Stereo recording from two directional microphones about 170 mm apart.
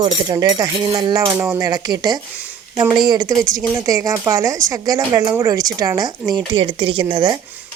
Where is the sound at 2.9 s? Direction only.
25° right (ahead or behind).